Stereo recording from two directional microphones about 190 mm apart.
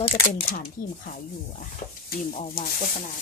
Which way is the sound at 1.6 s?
50° left (ahead or behind).